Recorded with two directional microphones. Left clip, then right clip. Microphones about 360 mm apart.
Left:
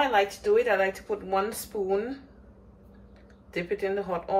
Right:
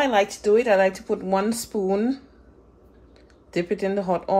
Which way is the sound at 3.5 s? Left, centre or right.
Centre.